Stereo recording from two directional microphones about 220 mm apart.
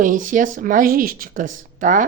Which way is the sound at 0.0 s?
35° right (ahead or behind).